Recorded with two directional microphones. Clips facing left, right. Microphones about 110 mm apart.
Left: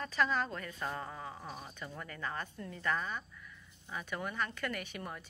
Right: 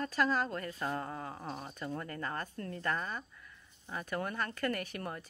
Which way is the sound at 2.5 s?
60° right (ahead or behind).